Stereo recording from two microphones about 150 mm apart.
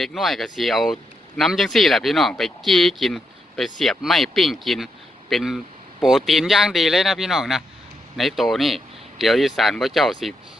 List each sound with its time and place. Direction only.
0.0 s speech: centre (ahead or behind)